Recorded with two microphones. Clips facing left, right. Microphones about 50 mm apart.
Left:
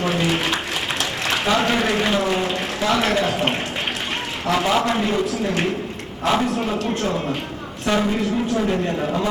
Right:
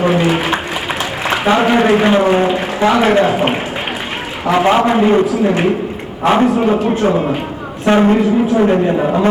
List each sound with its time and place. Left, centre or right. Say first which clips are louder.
0.0 s a sound: right 7 dB; centre
1.5 s speech: right 9 dB; right
2.4 s speech: right 9 dB; centre
2.8 s speech: right 8 dB; right
3.2 s speech: right 7 dB; centre
4.6 s a man's voice: right 9 dB; right
4.9 s speech: right 9 dB; centre
5.3 s speech: right 8 dB; centre
6.2 s speech: right 8 dB; right
6.7 s speech: right 9 dB; centre
7.9 s speech: right 9 dB; right
8.2 s speech: right 8 dB; centre
9.0 s speech: right 8 dB; right